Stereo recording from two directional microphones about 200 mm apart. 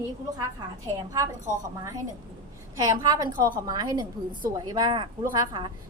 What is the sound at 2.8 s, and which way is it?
A woman's voice, 20° right (ahead or behind).